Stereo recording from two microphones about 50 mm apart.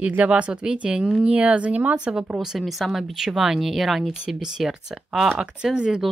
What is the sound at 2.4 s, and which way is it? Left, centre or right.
Speech, centre.